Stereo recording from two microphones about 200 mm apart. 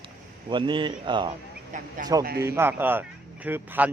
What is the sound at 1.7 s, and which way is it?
Speech, 40° right (ahead or behind).